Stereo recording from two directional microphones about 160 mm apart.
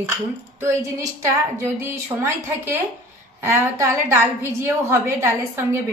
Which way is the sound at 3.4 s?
15° right (ahead or behind).